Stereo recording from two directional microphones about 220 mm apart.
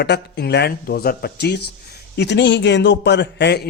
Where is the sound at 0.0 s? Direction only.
50° left (ahead or behind).